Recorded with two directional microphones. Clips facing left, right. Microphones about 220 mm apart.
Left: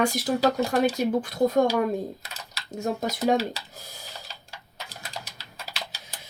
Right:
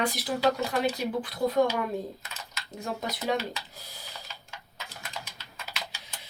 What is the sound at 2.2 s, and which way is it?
Speech, 40° left (ahead or behind).